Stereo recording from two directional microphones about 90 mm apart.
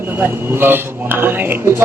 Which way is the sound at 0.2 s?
25° right (ahead or behind).